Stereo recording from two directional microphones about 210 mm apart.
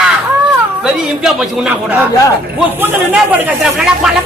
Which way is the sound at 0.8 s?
5° right (ahead or behind).